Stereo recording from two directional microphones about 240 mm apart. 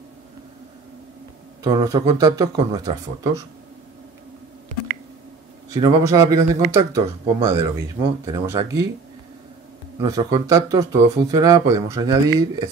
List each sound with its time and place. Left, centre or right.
1.6 s speech: centre
4.7 s squish: right
5.7 s speech: centre
9.9 s speech: centre